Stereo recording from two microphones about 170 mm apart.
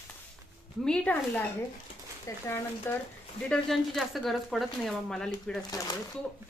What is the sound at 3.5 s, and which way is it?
Speech, centre (ahead or behind).